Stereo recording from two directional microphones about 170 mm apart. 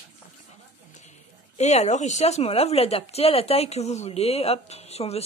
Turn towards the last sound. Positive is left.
turn(degrees=40)  # may be behind; listen again after turning